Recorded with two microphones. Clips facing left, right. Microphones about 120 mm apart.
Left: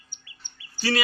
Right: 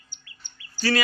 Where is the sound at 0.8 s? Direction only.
25° left (ahead or behind).